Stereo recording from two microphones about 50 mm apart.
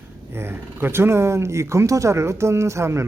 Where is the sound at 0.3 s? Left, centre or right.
Right.